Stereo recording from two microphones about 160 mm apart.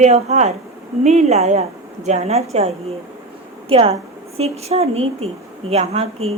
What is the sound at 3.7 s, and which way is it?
A woman's voice, 40° right (ahead or behind).